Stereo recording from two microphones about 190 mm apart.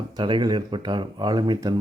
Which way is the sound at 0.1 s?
25° right (ahead or behind).